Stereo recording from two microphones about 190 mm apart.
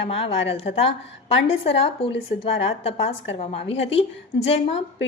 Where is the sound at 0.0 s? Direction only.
30° left (ahead or behind).